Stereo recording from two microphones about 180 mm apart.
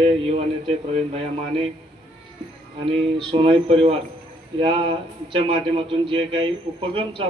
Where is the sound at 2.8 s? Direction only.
30° right (ahead or behind).